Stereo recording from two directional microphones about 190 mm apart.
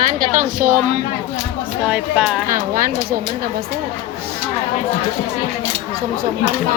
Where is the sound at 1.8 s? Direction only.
5° right (ahead or behind).